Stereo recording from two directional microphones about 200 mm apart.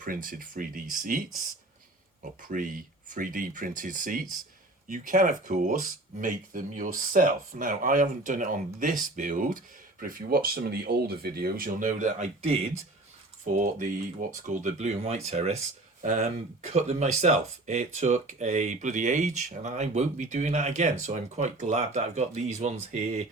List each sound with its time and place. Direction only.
0.0 s speech: 45° right (ahead or behind)
2.4 s speech: 45° right (ahead or behind)